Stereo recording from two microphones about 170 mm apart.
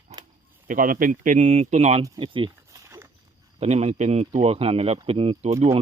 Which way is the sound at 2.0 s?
30° right (ahead or behind).